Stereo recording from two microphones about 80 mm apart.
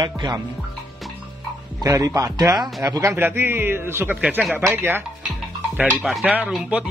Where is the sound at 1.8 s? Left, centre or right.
Right.